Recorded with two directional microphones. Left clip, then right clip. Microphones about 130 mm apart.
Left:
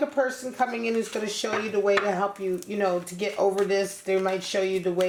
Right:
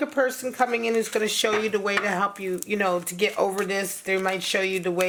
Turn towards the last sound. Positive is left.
turn(degrees=-35)  # may be behind; listen again after turning